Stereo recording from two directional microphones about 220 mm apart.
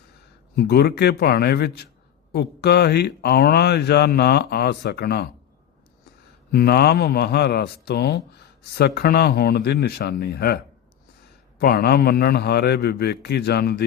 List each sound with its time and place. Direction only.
0.5 s speech: 45° left (ahead or behind)
6.5 s speech: 45° left (ahead or behind)
11.6 s speech: 45° left (ahead or behind)